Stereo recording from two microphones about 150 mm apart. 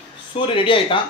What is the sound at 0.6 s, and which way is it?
Speech, 35° left (ahead or behind).